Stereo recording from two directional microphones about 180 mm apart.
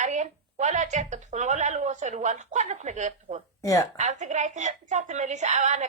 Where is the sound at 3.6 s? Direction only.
15° left (ahead or behind).